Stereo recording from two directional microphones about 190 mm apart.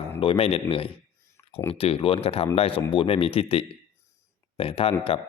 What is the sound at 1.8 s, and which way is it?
A man's voice, 30° left (ahead or behind).